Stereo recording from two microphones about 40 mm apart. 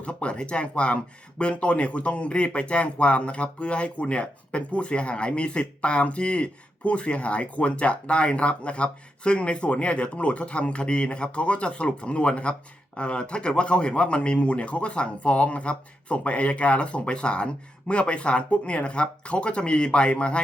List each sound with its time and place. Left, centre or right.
0.0 s speech: left